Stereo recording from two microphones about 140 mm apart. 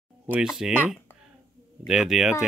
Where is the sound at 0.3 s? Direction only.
5° right (ahead or behind).